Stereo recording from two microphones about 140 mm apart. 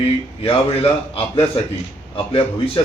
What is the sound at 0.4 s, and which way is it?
A man's voice, 40° left (ahead or behind).